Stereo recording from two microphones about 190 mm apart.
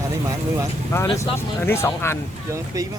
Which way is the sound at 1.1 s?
15° left (ahead or behind).